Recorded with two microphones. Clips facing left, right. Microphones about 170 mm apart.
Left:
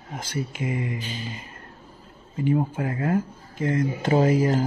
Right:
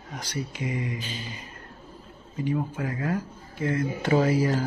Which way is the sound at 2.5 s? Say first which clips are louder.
Left 4 dB; 30° left (ahead or behind).